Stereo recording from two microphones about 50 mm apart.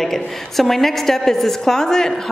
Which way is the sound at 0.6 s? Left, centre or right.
Centre.